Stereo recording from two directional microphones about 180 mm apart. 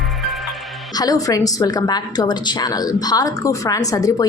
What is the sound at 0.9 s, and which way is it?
A woman's voice, 20° left (ahead or behind).